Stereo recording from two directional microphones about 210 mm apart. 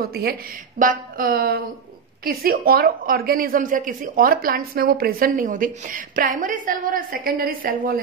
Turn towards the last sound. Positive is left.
turn(degrees=-40)  # may be behind; listen again after turning